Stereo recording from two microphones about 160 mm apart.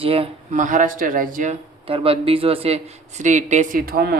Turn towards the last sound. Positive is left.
turn(degrees=-75)  # may be behind; listen again after turning